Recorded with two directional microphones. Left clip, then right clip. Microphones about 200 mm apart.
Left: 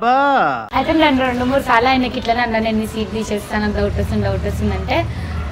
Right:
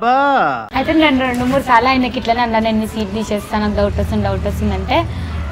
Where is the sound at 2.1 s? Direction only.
15° right (ahead or behind).